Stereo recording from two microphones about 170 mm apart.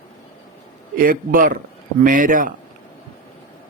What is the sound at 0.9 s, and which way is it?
A man's voice, 55° right (ahead or behind).